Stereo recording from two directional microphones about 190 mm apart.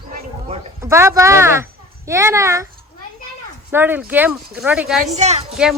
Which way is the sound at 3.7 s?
10° right (ahead or behind).